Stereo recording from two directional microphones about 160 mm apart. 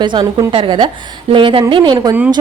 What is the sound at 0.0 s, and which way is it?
A woman's voice, 30° right (ahead or behind).